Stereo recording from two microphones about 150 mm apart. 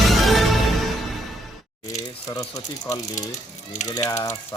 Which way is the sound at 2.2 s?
25° left (ahead or behind).